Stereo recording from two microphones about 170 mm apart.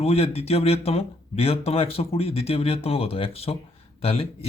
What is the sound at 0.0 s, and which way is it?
Speech, 35° left (ahead or behind).